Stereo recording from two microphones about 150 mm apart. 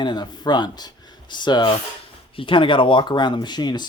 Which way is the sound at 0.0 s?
30° left (ahead or behind).